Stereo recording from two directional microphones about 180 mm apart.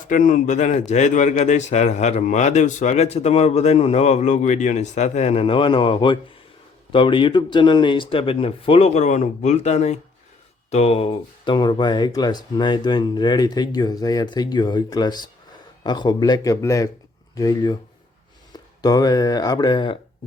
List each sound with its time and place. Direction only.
0.1 s speech: 45° left (ahead or behind); by 17.7 s 20° left (ahead or behind)
18.8 s speech: 20° left (ahead or behind)